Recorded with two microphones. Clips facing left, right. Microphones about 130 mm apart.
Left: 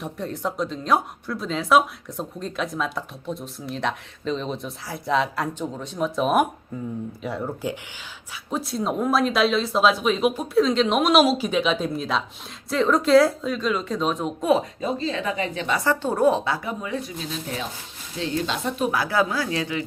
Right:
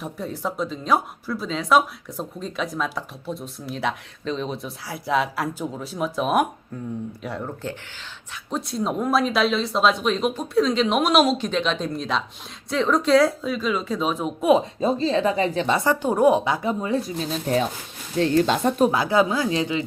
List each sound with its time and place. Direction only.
0.0 s speech: centre (ahead or behind)
14.8 s a woman's voice: 35° right (ahead or behind)
15.9 s a woman's voice: 15° right (ahead or behind)
16.8 s a woman's voice: 35° right (ahead or behind)
18.9 s speech: 20° right (ahead or behind)